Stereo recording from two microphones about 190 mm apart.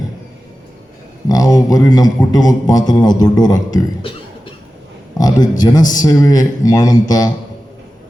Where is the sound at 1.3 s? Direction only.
20° left (ahead or behind).